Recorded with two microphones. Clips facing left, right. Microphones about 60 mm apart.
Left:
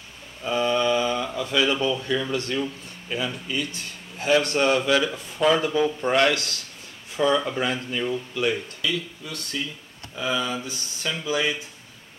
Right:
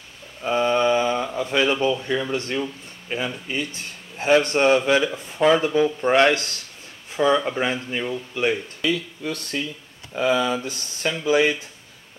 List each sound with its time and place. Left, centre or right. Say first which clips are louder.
0.4 s speech: right 3 dB; right
5.7 s speech: right 3 dB; centre
6.0 s speech: right 4 dB; right
7.2 s speech: right 2 dB; centre
8.8 s speech: right 6 dB; right